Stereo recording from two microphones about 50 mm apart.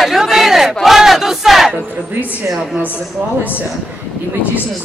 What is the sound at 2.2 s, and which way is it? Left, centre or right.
Speech, right.